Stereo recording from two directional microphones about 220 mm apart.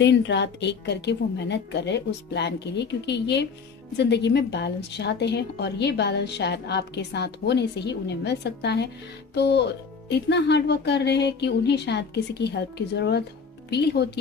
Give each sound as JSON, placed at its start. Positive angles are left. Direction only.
{"t": 0.0, "sound": "a woman's voice", "side_deg": 55}